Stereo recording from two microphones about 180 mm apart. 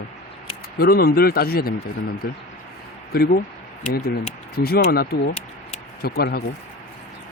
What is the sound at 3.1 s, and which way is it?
A man's voice, 55° left (ahead or behind).